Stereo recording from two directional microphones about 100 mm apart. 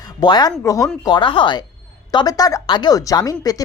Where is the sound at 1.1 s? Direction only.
55° left (ahead or behind).